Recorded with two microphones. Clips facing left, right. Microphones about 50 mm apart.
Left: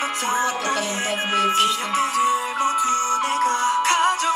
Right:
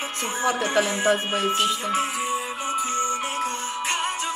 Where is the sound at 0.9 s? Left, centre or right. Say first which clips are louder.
Even; left.